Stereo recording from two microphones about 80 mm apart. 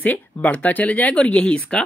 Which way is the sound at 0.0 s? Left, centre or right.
Centre.